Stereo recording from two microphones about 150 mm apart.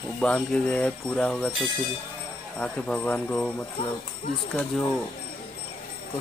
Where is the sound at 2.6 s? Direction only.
10° left (ahead or behind).